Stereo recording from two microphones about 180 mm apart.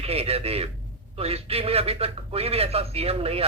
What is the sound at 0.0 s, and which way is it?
A man's voice, 35° right (ahead or behind).